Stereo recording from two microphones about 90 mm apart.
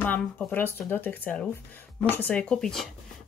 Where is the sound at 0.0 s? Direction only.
15° left (ahead or behind).